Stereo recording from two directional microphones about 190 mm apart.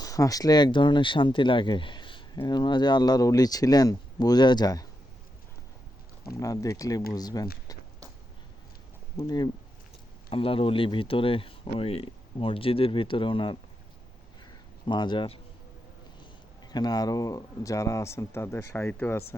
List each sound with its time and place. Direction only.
0.0 s speech: 20° left (ahead or behind)
6.4 s speech: 15° left (ahead or behind)
9.1 s speech: 20° left (ahead or behind)
14.8 s speech: 25° left (ahead or behind)
16.7 s speech: 20° left (ahead or behind)